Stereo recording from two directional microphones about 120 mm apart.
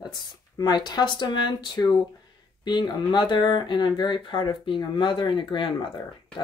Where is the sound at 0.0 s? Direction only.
35° left (ahead or behind).